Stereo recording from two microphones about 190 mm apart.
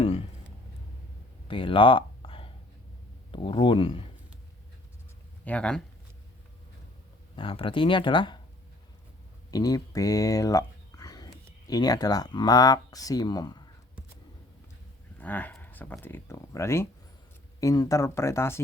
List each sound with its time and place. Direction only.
0.0 s a sound: 30° left (ahead or behind)
1.5 s a sound: 25° left (ahead or behind)
3.3 s speech: 30° left (ahead or behind)
5.5 s speech: 5° left (ahead or behind)
7.3 s speech: 30° left (ahead or behind)
9.5 s speech: 20° left (ahead or behind)
15.2 s speech: 10° left (ahead or behind)